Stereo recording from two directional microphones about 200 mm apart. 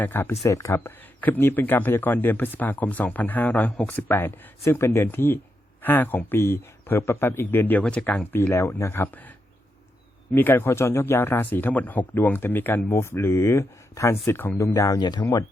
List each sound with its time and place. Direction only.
0.0 s speech: 10° left (ahead or behind)
10.3 s speech: 10° left (ahead or behind)